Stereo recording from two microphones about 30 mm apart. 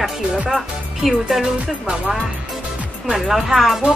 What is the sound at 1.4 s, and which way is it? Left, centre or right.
Music, right.